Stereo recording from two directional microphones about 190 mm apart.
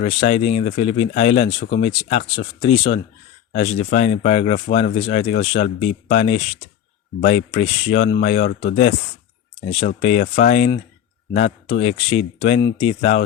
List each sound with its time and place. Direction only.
0.0 s speech: 35° left (ahead or behind)
10.0 s speech: 35° left (ahead or behind)